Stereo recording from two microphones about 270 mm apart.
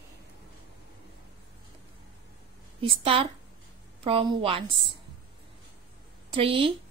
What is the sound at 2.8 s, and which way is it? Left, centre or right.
A woman's voice, centre.